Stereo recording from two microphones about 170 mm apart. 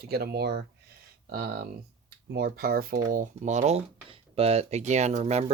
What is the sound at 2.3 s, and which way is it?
Speech, 60° right (ahead or behind).